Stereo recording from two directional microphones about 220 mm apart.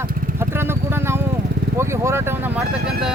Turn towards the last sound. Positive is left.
turn(degrees=-5)  # may be behind; listen again after turning